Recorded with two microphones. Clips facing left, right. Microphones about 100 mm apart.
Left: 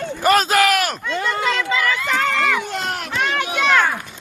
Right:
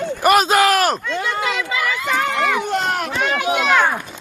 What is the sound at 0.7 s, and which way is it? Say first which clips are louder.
Speech: right 3 dB; 35° right (ahead or behind).